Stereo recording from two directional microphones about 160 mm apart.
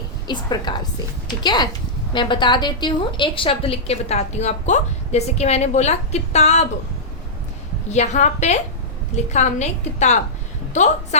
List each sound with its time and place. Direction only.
0.3 s a woman's voice: 25° left (ahead or behind); by 6.7 s 45° left (ahead or behind)
7.9 s a woman's voice: 45° left (ahead or behind)